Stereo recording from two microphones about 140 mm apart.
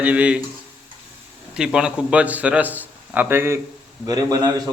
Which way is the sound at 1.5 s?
5° right (ahead or behind).